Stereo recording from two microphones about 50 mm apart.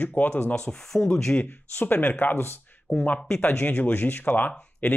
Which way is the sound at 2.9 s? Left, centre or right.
Left.